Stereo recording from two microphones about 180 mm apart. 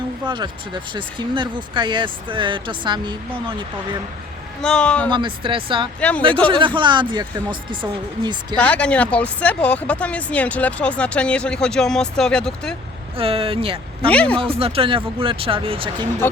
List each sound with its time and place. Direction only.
0.3 s speech: 25° right (ahead or behind)
4.6 s speech: 5° left (ahead or behind)
5.1 s speech: 25° right (ahead or behind)
6.0 s speech: 10° left (ahead or behind)
6.5 s speech: 25° right (ahead or behind)
8.5 s speech: 5° left (ahead or behind)
13.1 s speech: 30° right (ahead or behind)
14.1 s speech: 5° left (ahead or behind)
14.3 s speech: 30° right (ahead or behind)